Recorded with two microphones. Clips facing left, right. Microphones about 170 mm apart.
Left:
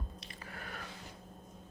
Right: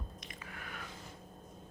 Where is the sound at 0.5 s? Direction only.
40° left (ahead or behind).